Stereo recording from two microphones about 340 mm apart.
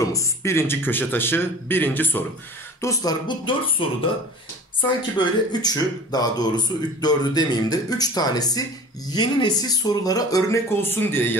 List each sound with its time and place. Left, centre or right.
0.0 s speech: centre
5.1 s speech: centre